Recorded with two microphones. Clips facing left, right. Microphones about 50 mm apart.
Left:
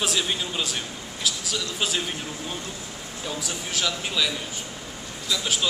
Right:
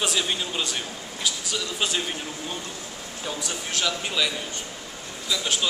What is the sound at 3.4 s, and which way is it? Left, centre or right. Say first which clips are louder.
A man's voice: even; centre.